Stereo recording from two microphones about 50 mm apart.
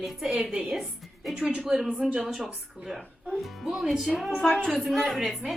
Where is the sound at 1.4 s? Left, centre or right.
Centre.